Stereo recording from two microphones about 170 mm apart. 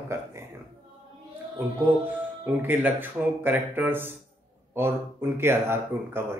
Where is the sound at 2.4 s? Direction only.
10° right (ahead or behind).